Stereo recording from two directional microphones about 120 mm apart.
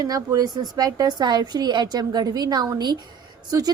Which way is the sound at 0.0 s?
30° right (ahead or behind).